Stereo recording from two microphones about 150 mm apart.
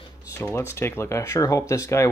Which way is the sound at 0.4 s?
15° left (ahead or behind).